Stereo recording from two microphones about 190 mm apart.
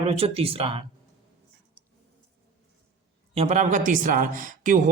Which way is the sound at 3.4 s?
35° right (ahead or behind).